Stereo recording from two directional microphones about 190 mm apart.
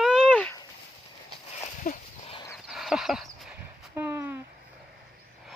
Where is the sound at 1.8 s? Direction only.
40° left (ahead or behind).